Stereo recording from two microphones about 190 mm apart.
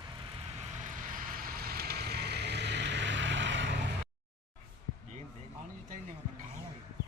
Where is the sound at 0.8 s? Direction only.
45° right (ahead or behind); by 3.8 s 70° right (ahead or behind).